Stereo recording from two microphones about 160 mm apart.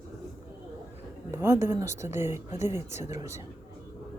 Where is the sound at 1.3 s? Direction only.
15° right (ahead or behind).